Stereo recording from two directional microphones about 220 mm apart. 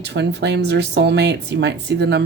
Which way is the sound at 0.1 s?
50° right (ahead or behind).